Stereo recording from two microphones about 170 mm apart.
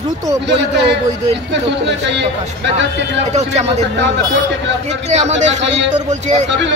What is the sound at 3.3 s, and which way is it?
Speech, 40° right (ahead or behind).